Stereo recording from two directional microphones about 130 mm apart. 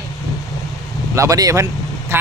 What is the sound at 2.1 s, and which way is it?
Quack, 20° right (ahead or behind).